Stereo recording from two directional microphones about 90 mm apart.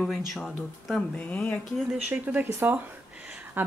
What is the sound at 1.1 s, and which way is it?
Speech, 15° left (ahead or behind).